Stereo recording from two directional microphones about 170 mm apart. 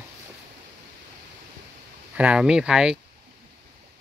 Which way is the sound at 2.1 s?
5° right (ahead or behind).